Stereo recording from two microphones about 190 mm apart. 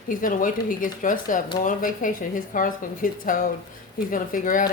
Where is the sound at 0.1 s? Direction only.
45° left (ahead or behind).